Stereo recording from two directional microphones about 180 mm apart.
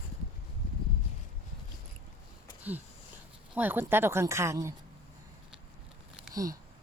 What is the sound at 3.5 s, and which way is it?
Speech, 10° right (ahead or behind).